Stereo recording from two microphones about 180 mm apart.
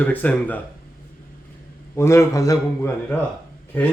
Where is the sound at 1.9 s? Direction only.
15° left (ahead or behind).